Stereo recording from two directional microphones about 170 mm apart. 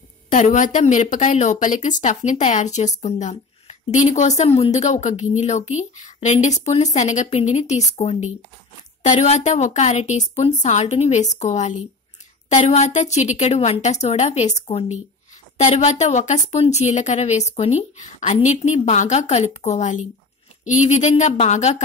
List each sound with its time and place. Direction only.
0.3 s a woman's voice: 50° left (ahead or behind)